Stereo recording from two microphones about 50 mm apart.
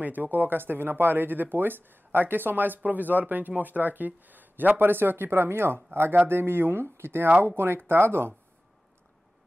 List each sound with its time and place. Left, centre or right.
0.0 s speech: right